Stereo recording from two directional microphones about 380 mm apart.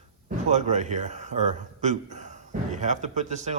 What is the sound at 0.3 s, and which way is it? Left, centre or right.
Speech, centre.